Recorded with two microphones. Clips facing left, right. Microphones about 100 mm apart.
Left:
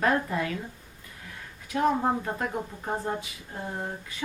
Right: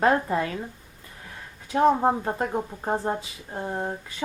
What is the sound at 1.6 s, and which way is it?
Speech, 30° right (ahead or behind).